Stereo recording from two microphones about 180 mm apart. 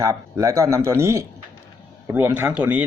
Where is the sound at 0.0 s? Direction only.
15° right (ahead or behind).